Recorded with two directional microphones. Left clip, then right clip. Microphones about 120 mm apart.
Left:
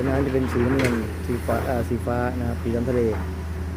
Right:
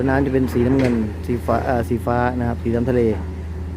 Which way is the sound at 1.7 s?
50° right (ahead or behind).